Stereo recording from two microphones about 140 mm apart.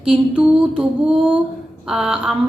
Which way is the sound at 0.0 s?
5° right (ahead or behind).